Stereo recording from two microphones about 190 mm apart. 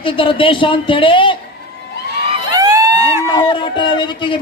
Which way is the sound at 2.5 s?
20° right (ahead or behind).